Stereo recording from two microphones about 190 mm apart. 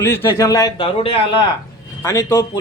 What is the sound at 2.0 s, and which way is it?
Speech, 15° left (ahead or behind).